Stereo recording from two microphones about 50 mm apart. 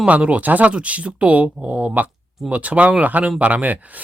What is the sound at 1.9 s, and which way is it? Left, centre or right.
Speech, right.